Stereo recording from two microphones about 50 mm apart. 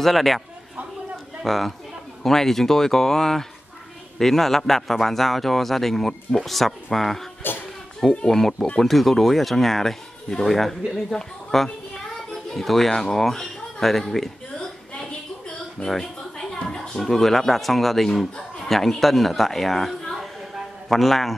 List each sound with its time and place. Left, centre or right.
0.0 s a man's voice: centre
1.4 s a man's voice: centre
8.3 s a man's voice: centre
15.0 s a sound: centre
17.0 s a man's voice: centre